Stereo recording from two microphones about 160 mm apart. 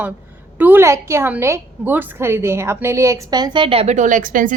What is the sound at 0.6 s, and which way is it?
A woman's voice, 15° right (ahead or behind).